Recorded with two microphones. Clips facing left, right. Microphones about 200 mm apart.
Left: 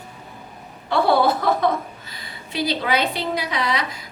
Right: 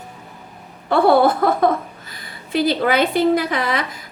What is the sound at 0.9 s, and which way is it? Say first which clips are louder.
Speech: right 4 dB; 50° right (ahead or behind).